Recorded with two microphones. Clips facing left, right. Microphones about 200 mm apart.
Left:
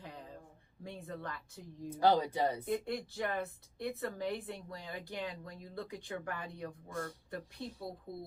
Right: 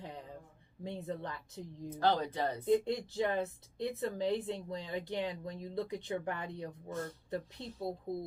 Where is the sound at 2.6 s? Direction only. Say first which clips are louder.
Right 6 dB; 20° right (ahead or behind).